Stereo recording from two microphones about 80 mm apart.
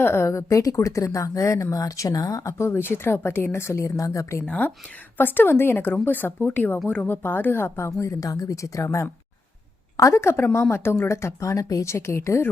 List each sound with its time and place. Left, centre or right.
0.0 s a woman's voice: left
2.6 s a woman's voice: left
4.4 s a woman's voice: centre; by 12.5 s left